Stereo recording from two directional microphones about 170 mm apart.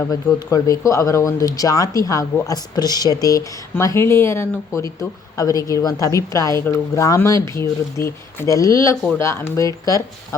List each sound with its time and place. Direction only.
0.0 s speech: 20° left (ahead or behind)